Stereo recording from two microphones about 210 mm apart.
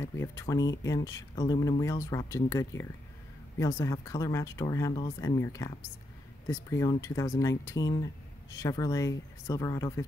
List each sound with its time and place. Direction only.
0.0 s speech: 15° left (ahead or behind)